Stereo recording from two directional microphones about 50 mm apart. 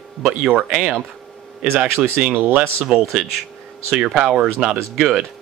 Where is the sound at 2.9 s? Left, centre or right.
Centre.